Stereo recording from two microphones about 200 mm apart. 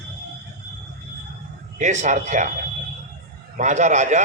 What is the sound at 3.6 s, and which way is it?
Speech, 35° right (ahead or behind).